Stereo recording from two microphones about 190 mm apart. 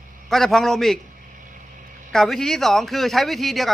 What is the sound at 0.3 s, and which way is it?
Speech, centre (ahead or behind).